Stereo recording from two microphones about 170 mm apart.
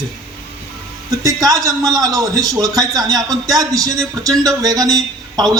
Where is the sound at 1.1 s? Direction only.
20° right (ahead or behind).